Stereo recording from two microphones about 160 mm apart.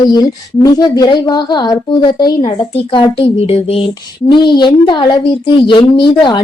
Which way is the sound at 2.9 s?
35° left (ahead or behind).